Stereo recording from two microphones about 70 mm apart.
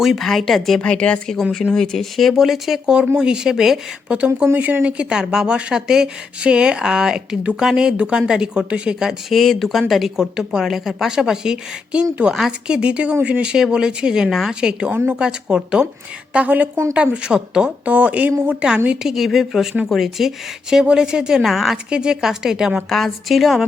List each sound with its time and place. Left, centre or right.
0.0 s speech: centre
0.8 s speech: centre
1.4 s speech: centre
4.5 s speech: right; by 22.8 s centre
22.9 s speech: centre